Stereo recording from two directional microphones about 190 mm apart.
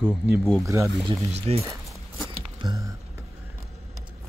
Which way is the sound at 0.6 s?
15° right (ahead or behind).